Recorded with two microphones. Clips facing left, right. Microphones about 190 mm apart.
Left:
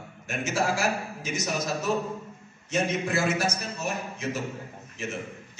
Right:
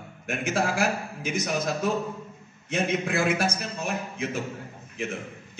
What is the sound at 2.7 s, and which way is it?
A man's voice, 55° right (ahead or behind).